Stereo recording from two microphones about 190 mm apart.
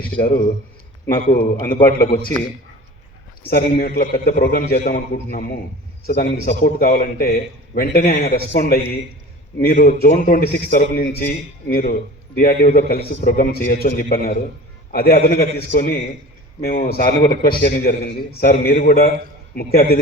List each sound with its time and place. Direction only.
1.0 s a man's voice: 50° left (ahead or behind)
3.5 s a man's voice: 50° left (ahead or behind)